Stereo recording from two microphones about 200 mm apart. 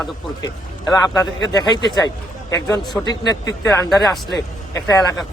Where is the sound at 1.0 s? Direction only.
20° left (ahead or behind).